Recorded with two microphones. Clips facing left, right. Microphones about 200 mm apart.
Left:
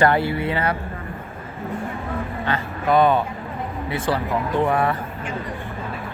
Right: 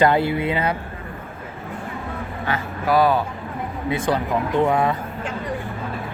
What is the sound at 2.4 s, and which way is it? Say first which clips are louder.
Speech: right 1 dB; 5° right (ahead or behind).